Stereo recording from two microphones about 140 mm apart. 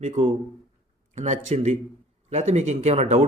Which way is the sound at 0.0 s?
50° right (ahead or behind).